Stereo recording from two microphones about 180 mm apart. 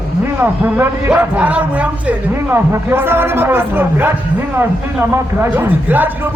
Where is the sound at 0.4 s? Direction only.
10° right (ahead or behind).